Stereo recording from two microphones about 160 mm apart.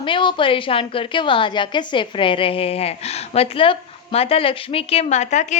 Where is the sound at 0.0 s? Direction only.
30° left (ahead or behind).